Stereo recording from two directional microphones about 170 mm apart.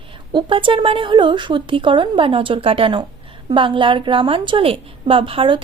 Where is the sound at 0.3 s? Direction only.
30° right (ahead or behind).